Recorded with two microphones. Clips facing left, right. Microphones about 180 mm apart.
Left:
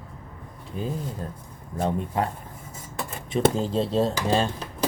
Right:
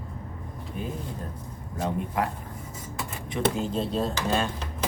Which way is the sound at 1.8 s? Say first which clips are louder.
Left 2 dB; 30° left (ahead or behind).